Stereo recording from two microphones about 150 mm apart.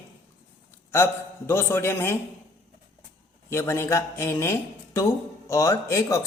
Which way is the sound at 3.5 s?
20° left (ahead or behind).